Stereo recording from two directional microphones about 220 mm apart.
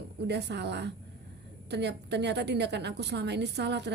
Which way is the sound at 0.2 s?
50° right (ahead or behind).